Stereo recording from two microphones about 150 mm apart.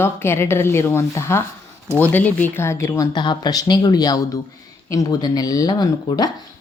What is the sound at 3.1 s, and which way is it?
A woman's voice, 30° left (ahead or behind).